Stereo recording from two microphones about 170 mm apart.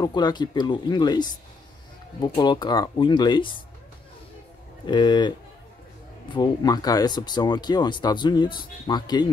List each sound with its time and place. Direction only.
0.0 s speech: 25° left (ahead or behind)
4.8 s speech: 25° left (ahead or behind)
6.3 s speech: 25° left (ahead or behind)